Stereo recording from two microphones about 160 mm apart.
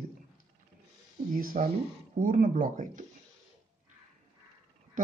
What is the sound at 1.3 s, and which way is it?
Speech, 60° right (ahead or behind).